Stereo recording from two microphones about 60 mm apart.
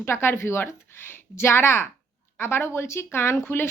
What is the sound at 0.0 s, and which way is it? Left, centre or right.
Speech, left.